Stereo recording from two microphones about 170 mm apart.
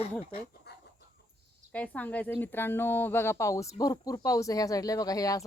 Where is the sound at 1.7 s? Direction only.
10° left (ahead or behind).